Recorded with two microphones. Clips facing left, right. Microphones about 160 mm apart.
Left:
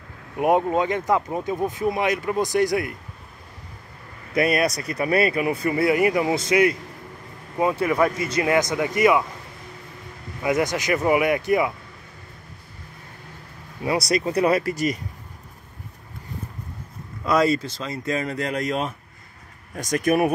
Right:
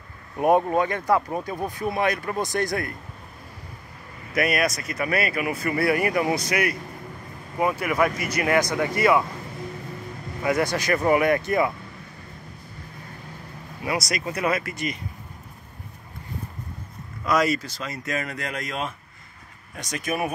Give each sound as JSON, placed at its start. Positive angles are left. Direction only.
{"t": 0.4, "sound": "speech", "side_deg": 15}
{"t": 4.4, "sound": "speech", "side_deg": 30}
{"t": 5.8, "sound": "speech", "side_deg": 20}
{"t": 10.4, "sound": "speech", "side_deg": 20}
{"t": 13.8, "sound": "speech", "side_deg": 30}
{"t": 17.3, "sound": "speech", "side_deg": 30}
{"t": 19.7, "sound": "speech", "side_deg": 45}